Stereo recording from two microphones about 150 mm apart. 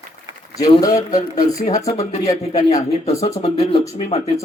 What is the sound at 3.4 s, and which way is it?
Speech, 40° left (ahead or behind).